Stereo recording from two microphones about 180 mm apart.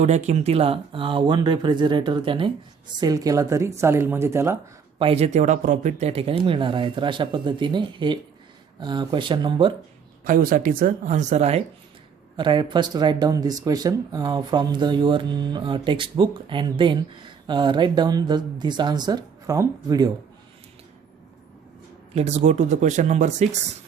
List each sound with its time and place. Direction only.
0.0 s speech: 40° right (ahead or behind); by 4.5 s 15° right (ahead or behind)
4.9 s speech: 30° right (ahead or behind)
10.2 s speech: 50° right (ahead or behind)
12.4 s speech: 25° right (ahead or behind)
22.1 s speech: 40° right (ahead or behind)